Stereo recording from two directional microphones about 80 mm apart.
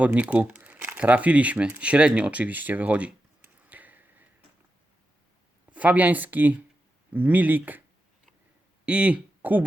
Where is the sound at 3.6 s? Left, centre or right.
Right.